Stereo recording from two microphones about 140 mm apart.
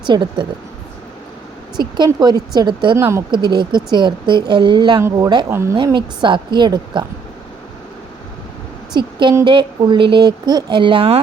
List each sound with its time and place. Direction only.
0.0 s speech: 35° right (ahead or behind)
2.0 s speech: 30° right (ahead or behind)
2.9 s speech: 20° right (ahead or behind)
3.3 s speech: 35° right (ahead or behind)
5.5 s speech: 20° right (ahead or behind)
5.7 s speech: 35° right (ahead or behind)
9.0 s speech: 35° right (ahead or behind)